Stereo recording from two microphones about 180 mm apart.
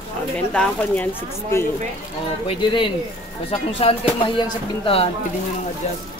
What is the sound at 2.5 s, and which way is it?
Speech, 25° left (ahead or behind).